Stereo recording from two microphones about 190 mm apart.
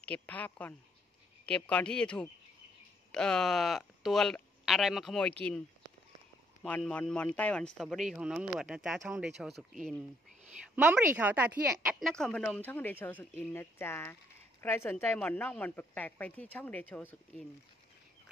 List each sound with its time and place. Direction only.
0.0 s a man's voice: 5° left (ahead or behind)
6.6 s a man's voice: 5° left (ahead or behind)